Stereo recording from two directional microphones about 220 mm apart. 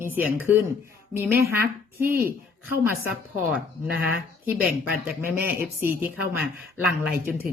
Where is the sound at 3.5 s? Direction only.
5° right (ahead or behind).